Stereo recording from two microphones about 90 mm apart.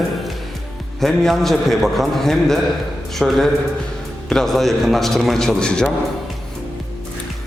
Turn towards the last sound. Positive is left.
turn(degrees=10)  # may be behind; listen again after turning